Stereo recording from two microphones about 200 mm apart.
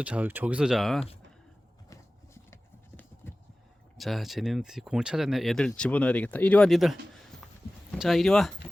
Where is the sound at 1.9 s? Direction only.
15° left (ahead or behind).